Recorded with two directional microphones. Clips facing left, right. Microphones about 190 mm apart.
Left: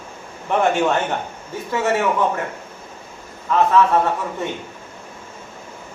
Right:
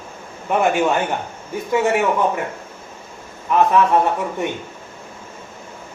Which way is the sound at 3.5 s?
15° right (ahead or behind).